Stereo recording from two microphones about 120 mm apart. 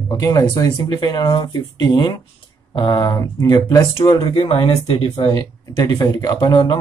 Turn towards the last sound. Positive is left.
turn(degrees=40)  # may be behind; listen again after turning